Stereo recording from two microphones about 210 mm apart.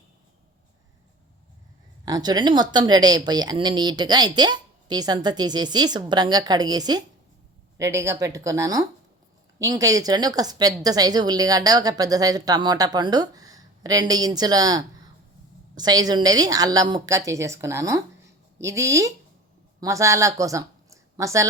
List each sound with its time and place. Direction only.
2.0 s a woman's voice: 20° right (ahead or behind)